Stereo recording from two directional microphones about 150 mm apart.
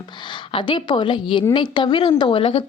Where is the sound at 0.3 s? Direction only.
30° left (ahead or behind).